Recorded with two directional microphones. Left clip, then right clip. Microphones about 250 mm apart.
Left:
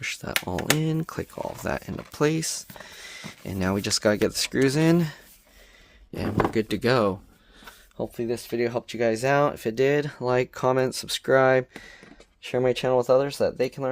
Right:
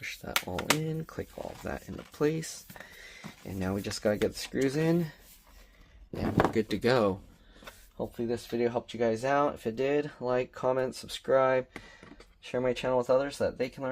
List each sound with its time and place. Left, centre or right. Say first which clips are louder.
0.0 s speech: left 5 dB; left
6.1 s speech: left 3 dB; left
7.9 s speech: left 5 dB; left